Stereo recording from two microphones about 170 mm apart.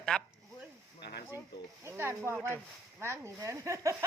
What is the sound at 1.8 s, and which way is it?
Speech, 15° right (ahead or behind).